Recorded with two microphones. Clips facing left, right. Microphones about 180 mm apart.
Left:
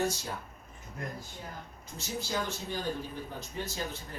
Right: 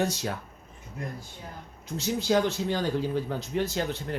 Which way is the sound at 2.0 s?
80° right.